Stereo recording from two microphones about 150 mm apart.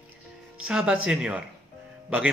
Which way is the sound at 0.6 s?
5° right (ahead or behind).